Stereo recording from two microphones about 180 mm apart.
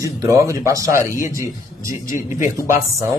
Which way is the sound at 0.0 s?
15° right (ahead or behind).